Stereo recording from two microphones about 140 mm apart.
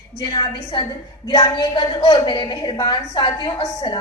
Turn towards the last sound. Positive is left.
turn(degrees=30)  # may be behind; listen again after turning